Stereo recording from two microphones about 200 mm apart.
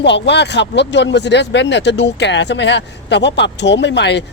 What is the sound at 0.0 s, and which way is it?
Speech, 60° left (ahead or behind).